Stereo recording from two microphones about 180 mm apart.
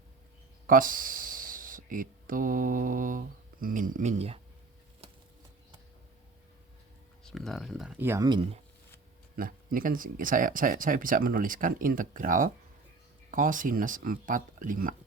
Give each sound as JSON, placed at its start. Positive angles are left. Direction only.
{"t": 0.7, "sound": "speech", "side_deg": -50}
{"t": 7.3, "sound": "speech", "side_deg": 0}
{"t": 9.3, "sound": "speech", "side_deg": -50}